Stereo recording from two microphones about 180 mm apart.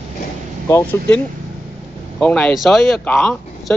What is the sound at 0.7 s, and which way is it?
Speech, 10° left (ahead or behind).